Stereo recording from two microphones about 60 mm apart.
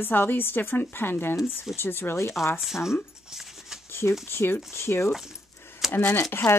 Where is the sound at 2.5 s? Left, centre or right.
Centre.